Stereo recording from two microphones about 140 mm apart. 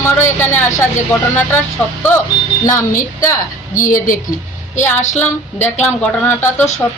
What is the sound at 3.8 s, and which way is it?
Speech, 70° left (ahead or behind).